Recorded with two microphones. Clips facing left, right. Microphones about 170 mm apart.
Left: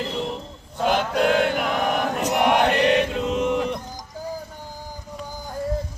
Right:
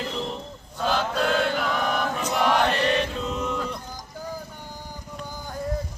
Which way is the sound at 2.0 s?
65° left (ahead or behind).